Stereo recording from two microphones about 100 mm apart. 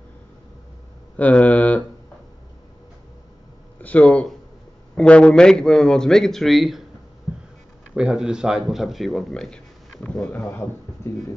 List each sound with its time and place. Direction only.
1.1 s speech: 15° left (ahead or behind)
3.8 s a man's voice: 15° left (ahead or behind)
7.9 s speech: 10° right (ahead or behind); by 11.2 s 25° left (ahead or behind)